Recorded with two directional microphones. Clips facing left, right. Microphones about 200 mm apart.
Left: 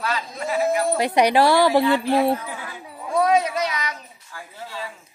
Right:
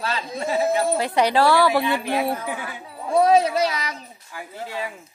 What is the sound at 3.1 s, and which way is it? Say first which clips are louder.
Speech: right 3 dB; 30° right (ahead or behind).